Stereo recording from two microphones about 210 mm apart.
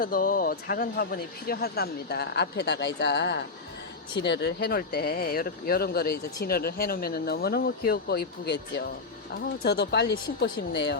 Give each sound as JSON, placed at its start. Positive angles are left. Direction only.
{"t": 0.0, "sound": "speech", "side_deg": 40}